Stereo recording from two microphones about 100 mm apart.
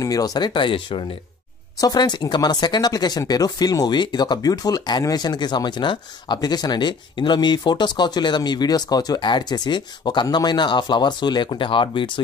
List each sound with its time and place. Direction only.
0.0 s speech: 40° left (ahead or behind); by 1.0 s 55° left (ahead or behind)
1.8 s speech: 40° left (ahead or behind)